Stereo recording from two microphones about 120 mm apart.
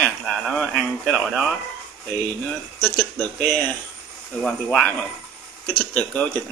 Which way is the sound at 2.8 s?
15° left (ahead or behind).